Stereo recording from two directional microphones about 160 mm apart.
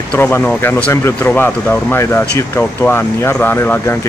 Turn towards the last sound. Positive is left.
turn(degrees=15)  # may be behind; listen again after turning